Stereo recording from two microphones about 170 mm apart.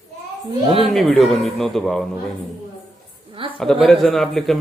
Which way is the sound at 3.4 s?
30° right (ahead or behind).